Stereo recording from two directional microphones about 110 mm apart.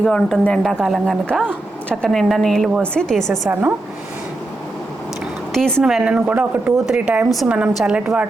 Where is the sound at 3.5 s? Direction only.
15° right (ahead or behind).